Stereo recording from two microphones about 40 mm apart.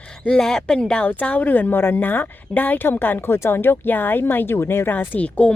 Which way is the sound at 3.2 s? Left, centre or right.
Left.